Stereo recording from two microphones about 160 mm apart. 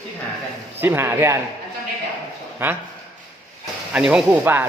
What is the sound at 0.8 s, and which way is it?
Speech, 15° right (ahead or behind).